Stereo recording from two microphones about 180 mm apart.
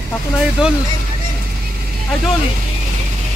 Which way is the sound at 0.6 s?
5° right (ahead or behind).